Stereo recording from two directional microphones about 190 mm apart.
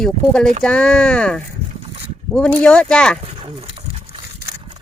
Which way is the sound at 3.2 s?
30° right (ahead or behind).